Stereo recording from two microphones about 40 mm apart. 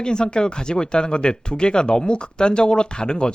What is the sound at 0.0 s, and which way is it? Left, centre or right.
Speech, left.